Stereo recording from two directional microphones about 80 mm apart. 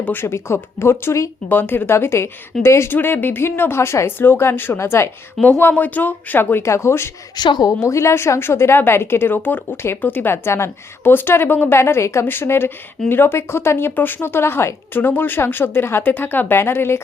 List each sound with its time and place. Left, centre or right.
0.0 s speech: left
1.5 s speech: left
7.3 s a woman's voice: left
7.7 s speech: left